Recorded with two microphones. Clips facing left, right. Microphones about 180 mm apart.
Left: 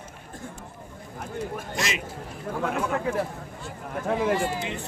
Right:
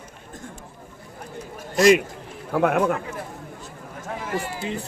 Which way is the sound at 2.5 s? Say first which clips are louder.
Right 8 dB; 65° right (ahead or behind).